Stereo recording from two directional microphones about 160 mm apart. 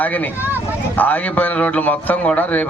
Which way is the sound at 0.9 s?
10° left (ahead or behind).